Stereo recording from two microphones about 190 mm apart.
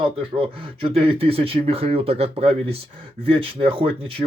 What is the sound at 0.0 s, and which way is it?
Speech, 30° right (ahead or behind).